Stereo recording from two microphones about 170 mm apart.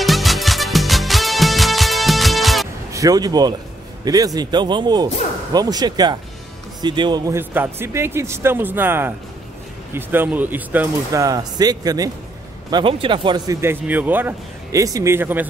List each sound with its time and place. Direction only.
0.0 s music: centre (ahead or behind)
2.9 s a man's voice: 20° right (ahead or behind)
13.6 s a man's voice: 10° right (ahead or behind)